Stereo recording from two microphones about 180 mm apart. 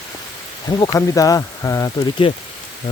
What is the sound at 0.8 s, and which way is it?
Speech, 20° left (ahead or behind).